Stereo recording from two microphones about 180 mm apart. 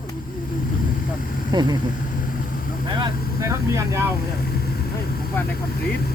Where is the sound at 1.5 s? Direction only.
25° right (ahead or behind).